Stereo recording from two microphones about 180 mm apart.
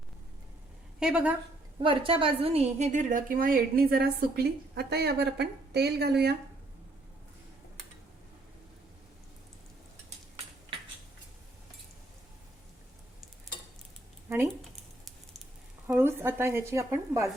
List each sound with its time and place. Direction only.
0.9 s a woman's voice: 5° right (ahead or behind)
1.8 s a woman's voice: 30° right (ahead or behind); by 6.3 s 65° right (ahead or behind)
14.3 s a sound: 15° right (ahead or behind)
15.9 s speech: 10° right (ahead or behind)